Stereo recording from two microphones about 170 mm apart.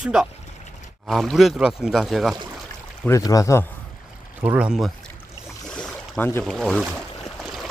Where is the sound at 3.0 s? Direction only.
20° left (ahead or behind).